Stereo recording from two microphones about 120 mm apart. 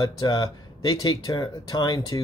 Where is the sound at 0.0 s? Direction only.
35° left (ahead or behind).